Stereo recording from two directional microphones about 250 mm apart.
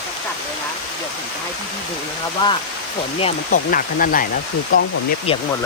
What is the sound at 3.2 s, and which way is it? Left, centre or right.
Speech, left.